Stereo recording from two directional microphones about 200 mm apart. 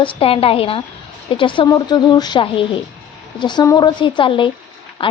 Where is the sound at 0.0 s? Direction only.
25° left (ahead or behind).